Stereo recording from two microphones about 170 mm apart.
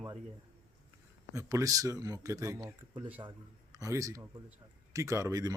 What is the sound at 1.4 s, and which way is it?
Speech, 20° right (ahead or behind).